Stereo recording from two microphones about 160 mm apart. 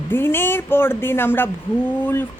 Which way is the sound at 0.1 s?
15° left (ahead or behind).